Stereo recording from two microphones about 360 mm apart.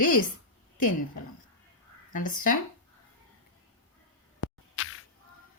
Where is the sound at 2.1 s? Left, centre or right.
Left.